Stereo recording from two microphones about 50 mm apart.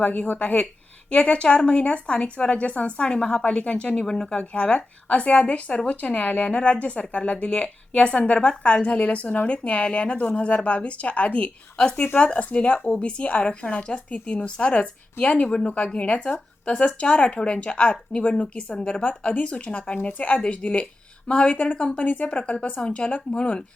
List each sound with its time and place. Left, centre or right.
0.0 s a woman's voice: left